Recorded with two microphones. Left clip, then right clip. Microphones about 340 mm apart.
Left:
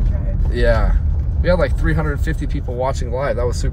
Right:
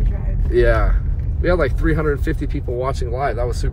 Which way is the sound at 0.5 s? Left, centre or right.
Centre.